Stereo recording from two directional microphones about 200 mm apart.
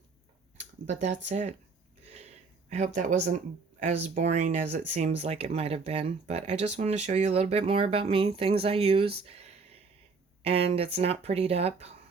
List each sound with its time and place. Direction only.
0.9 s speech: 35° right (ahead or behind)
2.6 s speech: 35° right (ahead or behind)